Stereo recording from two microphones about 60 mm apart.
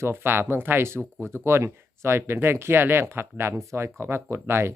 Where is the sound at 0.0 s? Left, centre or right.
Right.